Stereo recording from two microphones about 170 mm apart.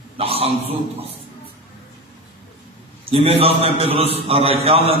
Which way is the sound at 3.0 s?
35° right (ahead or behind).